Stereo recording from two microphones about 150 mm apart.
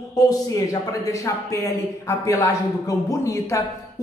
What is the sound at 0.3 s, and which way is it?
Speech, 20° left (ahead or behind).